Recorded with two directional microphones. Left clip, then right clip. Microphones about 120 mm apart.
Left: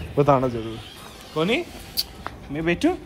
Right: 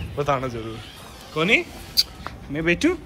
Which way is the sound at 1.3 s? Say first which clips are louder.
Right 3 dB; 30° left (ahead or behind).